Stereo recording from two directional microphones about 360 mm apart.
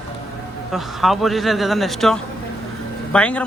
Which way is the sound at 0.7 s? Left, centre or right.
Centre.